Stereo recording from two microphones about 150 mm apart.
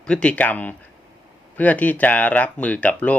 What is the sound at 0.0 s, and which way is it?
A man's voice, 5° left (ahead or behind).